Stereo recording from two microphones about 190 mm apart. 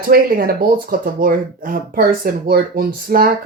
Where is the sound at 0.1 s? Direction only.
50° right (ahead or behind).